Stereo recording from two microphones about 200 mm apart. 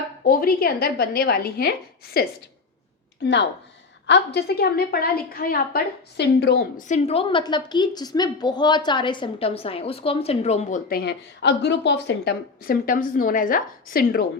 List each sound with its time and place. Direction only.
0.3 s a woman's voice: 45° left (ahead or behind)
4.0 s a woman's voice: 60° left (ahead or behind)